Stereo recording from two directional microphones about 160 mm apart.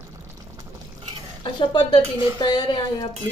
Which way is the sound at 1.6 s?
30° left (ahead or behind).